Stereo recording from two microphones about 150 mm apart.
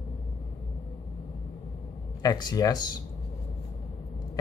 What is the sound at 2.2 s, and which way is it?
Speech, 25° left (ahead or behind).